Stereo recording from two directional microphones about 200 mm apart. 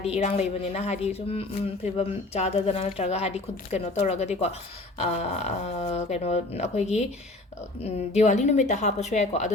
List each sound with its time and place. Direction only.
0.0 s speech: 30° left (ahead or behind)